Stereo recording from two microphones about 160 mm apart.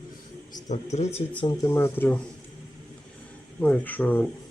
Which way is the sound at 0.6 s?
50° left (ahead or behind).